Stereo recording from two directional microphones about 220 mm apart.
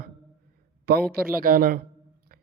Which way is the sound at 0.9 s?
45° right (ahead or behind).